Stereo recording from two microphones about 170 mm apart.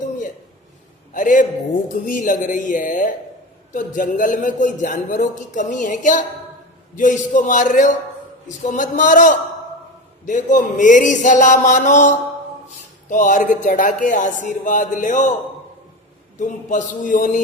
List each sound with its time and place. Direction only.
1.1 s a man's voice: 50° left (ahead or behind)
16.4 s a man's voice: 50° left (ahead or behind)